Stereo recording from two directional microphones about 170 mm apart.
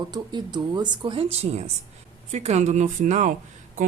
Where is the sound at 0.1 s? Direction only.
25° right (ahead or behind).